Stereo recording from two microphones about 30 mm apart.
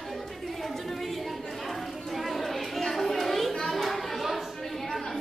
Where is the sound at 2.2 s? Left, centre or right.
Centre.